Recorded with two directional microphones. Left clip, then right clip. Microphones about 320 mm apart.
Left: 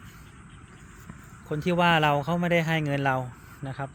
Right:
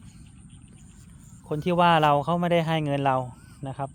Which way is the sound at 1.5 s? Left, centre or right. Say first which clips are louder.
Right 2 dB; centre.